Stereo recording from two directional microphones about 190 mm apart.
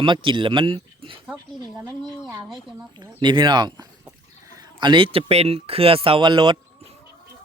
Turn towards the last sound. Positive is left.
turn(degrees=-25)  # may be behind; listen again after turning